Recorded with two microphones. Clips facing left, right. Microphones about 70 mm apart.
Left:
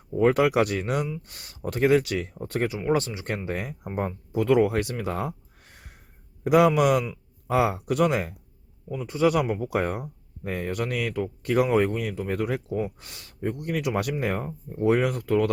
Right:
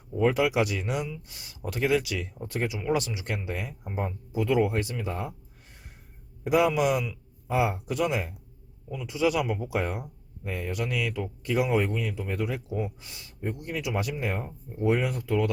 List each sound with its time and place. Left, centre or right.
0.2 s speech: left
6.4 s speech: left
8.9 s speech: left